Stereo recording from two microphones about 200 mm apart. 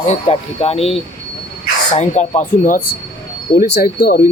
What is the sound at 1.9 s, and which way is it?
Speech, 35° left (ahead or behind).